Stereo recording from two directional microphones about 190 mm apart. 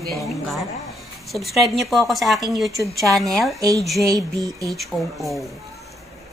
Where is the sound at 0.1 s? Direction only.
Centre (ahead or behind).